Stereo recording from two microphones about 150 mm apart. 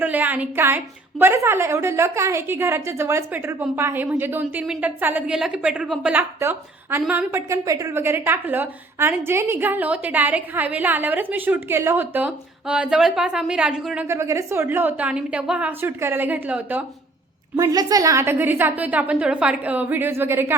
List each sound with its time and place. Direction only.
0.0 s a woman's voice: 10° right (ahead or behind)
14.0 s a woman's voice: 20° right (ahead or behind)
17.6 s a woman's voice: 25° right (ahead or behind)